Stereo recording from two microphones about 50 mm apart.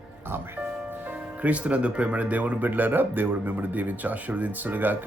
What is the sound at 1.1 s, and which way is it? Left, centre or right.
Speech, right.